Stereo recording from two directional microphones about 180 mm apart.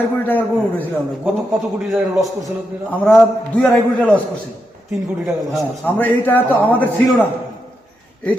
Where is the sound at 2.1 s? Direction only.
Centre (ahead or behind).